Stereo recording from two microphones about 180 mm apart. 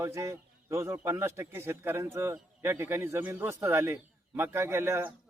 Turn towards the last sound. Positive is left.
turn(degrees=-15)  # may be behind; listen again after turning